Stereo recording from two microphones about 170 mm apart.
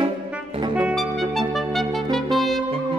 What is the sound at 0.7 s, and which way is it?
Clarinet, 5° right (ahead or behind).